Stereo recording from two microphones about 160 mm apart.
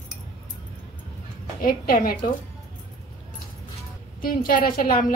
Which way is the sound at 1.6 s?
60° left (ahead or behind).